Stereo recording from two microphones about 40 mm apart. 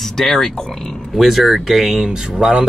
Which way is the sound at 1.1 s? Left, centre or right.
Centre.